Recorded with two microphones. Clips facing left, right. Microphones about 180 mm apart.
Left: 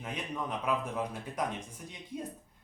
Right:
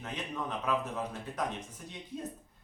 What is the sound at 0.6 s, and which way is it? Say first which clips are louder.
Speech: even; 10° left (ahead or behind).